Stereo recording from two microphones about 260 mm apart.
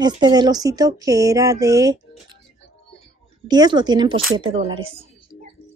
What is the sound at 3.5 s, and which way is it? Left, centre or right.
A woman's voice, centre.